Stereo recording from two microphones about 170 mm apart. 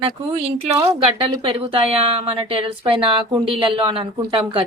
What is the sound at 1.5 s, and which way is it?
A woman's voice, 35° right (ahead or behind).